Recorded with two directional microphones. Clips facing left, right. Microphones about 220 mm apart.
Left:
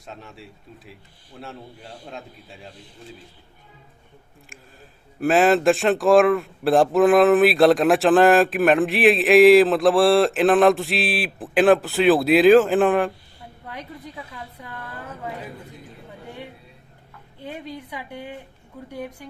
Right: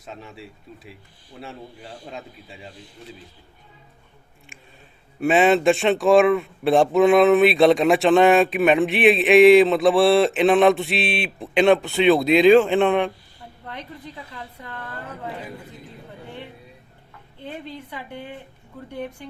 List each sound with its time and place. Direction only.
0.0 s speech: centre (ahead or behind)
5.2 s speech: centre (ahead or behind)
17.4 s speech: 10° left (ahead or behind)